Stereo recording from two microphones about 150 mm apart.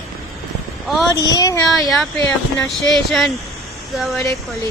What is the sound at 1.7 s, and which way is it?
Speech, centre (ahead or behind).